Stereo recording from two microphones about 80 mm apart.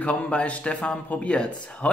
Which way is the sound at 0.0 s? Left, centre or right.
Centre.